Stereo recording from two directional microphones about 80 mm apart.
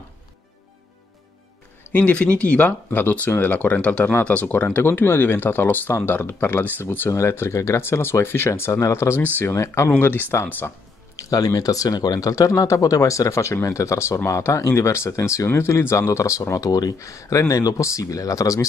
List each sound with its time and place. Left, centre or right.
1.9 s speech: centre; by 9.2 s left
9.2 s speech: left
11.1 s speech: left